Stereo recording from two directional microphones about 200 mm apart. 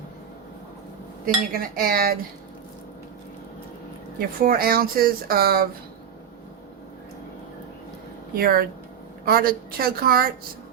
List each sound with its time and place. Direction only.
1.2 s speech: 45° right (ahead or behind)
4.4 s speech: 45° right (ahead or behind)
8.4 s speech: 50° right (ahead or behind)